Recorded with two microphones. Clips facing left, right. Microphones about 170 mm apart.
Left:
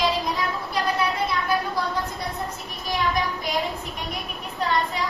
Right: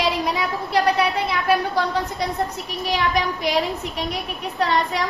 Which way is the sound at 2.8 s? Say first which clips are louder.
Right 3 dB; 70° right (ahead or behind).